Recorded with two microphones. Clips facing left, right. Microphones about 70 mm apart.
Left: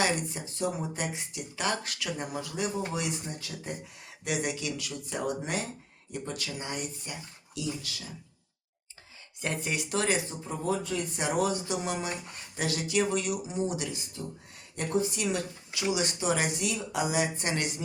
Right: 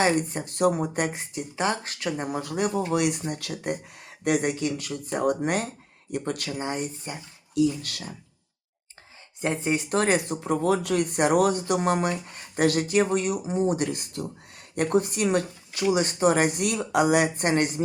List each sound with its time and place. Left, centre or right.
0.0 s speech: right
1.3 s speech: right
2.4 s speech: right
4.2 s speech: right
6.6 s speech: right
7.5 s speech: right
9.4 s speech: right
9.9 s speech: right
10.2 s speech: right
13.0 s speech: right